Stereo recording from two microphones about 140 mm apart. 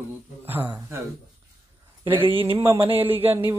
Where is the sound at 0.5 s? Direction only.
15° right (ahead or behind).